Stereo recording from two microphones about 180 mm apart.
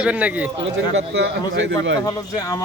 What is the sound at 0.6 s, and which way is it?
A man's voice, 80° right.